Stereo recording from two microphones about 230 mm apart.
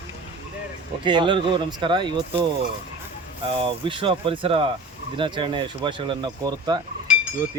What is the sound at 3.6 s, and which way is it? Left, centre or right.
Speech, right.